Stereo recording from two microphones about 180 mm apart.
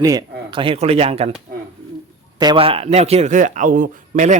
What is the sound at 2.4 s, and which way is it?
Speech, 25° right (ahead or behind).